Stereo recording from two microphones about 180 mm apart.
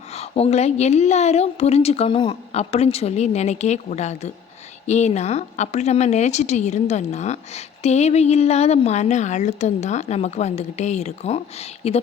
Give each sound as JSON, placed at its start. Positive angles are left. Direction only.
{"t": 0.1, "sound": "speech", "side_deg": 35}